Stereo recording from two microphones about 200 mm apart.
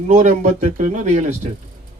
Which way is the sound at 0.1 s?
40° right (ahead or behind).